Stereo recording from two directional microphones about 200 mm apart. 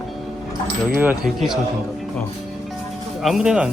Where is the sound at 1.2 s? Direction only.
Centre (ahead or behind).